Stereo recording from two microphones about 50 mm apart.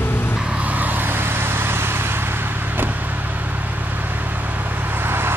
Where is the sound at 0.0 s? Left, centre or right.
Left.